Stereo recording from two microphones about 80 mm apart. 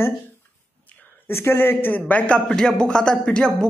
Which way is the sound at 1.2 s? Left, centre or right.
Left.